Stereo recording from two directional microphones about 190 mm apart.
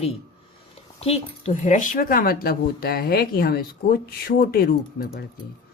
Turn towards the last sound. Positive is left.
turn(degrees=50)  # may be behind; listen again after turning